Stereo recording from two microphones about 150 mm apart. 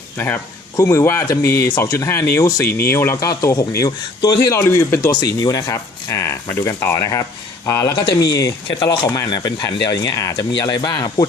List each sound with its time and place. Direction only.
0.8 s speech: 20° left (ahead or behind)